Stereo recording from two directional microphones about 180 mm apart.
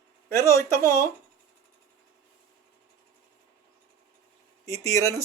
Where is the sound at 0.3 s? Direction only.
15° left (ahead or behind).